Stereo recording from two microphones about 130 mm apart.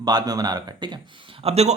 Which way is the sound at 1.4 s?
55° right (ahead or behind).